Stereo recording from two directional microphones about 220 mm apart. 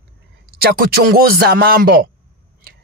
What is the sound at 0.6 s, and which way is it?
Speech, 45° right (ahead or behind).